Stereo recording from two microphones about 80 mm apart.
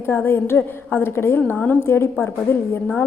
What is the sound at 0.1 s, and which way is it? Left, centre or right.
A woman's voice, left.